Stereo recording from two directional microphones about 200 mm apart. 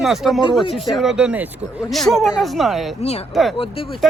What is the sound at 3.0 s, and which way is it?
Speech, 30° left (ahead or behind).